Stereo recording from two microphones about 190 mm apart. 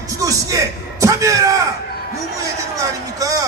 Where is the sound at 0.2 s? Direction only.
20° right (ahead or behind).